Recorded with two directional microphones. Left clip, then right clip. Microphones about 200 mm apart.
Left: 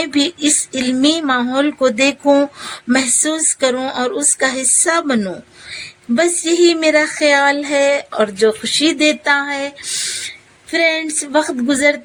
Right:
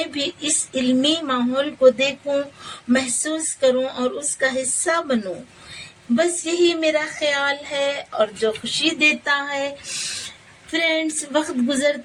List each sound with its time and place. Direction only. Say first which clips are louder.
0.0 s speech: left 8 dB; 55° left (ahead or behind)
2.9 s a sound: left 5 dB; 55° left (ahead or behind)
6.1 s speech: left 6 dB; 55° left (ahead or behind)